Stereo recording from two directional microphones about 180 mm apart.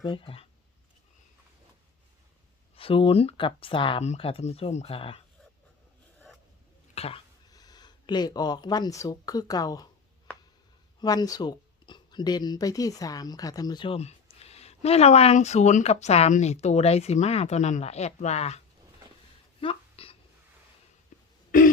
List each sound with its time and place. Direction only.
0.0 s speech: 25° left (ahead or behind)
2.7 s speech: 30° left (ahead or behind)
6.9 s a sound: 35° left (ahead or behind)
7.5 s speech: 20° left (ahead or behind)
11.0 s speech: 20° left (ahead or behind); by 18.6 s 35° left (ahead or behind)
19.6 s a sound: 30° left (ahead or behind)